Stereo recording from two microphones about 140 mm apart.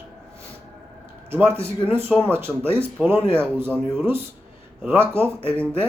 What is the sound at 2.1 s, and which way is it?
Speech, 10° left (ahead or behind).